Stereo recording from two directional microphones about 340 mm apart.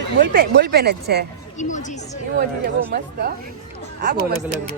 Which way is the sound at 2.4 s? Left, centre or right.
Right.